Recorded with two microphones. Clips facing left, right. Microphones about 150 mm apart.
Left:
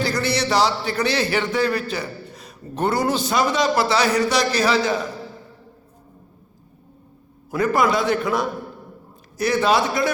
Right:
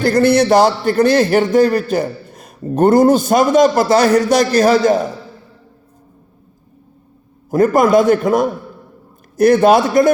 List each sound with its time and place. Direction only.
0.0 s a man's voice: 50° right (ahead or behind)
7.5 s a man's voice: 45° right (ahead or behind)